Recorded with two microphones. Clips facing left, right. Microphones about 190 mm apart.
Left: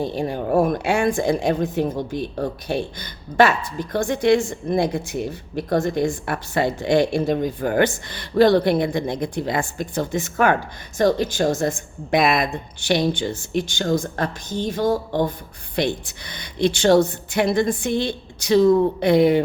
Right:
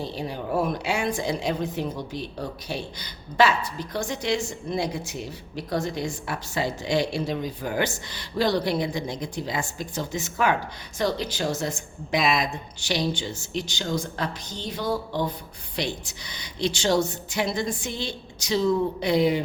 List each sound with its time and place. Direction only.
0.0 s a woman's voice: 50° left (ahead or behind)